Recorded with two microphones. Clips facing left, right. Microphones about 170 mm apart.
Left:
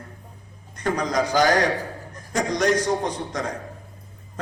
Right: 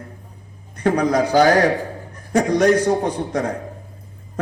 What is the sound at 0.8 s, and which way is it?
A man's voice, 60° right (ahead or behind).